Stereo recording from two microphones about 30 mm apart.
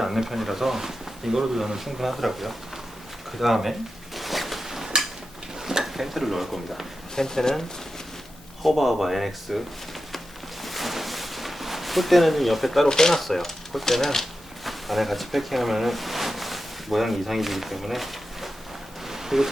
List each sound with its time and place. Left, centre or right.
0.0 s speech: centre
3.4 s a sound: centre
5.5 s speech: centre
7.2 s speech: centre
8.6 s speech: centre
10.6 s a sound: centre
12.9 s speech: left
13.1 s speech: centre
14.6 s speech: centre
19.0 s a sound: centre